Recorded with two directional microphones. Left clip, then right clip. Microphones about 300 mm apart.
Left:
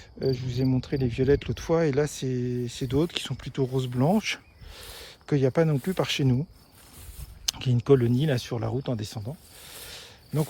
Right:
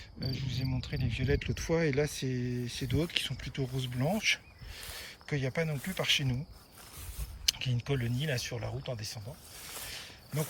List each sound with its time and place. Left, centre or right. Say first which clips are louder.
0.2 s speech: left 12 dB; centre
4.0 s a sound: left 3 dB; centre
5.9 s speech: left 3 dB; centre
7.4 s speech: left 7 dB; centre